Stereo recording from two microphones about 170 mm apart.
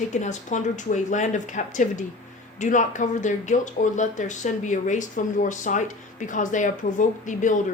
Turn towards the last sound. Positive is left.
turn(degrees=45)  # may be behind; listen again after turning